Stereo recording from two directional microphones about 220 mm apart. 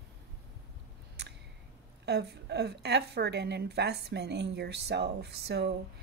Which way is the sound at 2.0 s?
50° right (ahead or behind).